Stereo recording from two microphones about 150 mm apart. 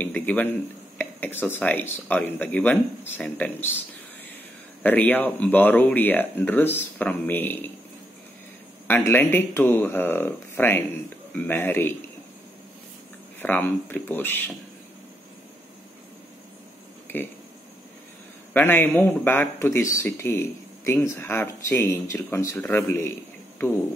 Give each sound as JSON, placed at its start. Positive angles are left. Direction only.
{"t": 0.0, "sound": "a man's voice", "side_deg": 10}
{"t": 4.8, "sound": "speech", "side_deg": 10}
{"t": 8.8, "sound": "speech", "side_deg": 15}
{"t": 13.4, "sound": "speech", "side_deg": 15}
{"t": 18.5, "sound": "speech", "side_deg": 10}